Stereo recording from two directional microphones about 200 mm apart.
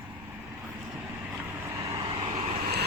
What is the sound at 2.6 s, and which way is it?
Vehicle, 55° right (ahead or behind).